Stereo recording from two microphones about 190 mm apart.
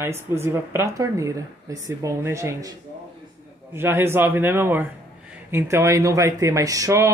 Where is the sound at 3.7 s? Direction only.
10° right (ahead or behind).